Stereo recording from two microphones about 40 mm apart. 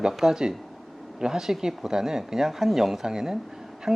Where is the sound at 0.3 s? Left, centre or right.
Centre.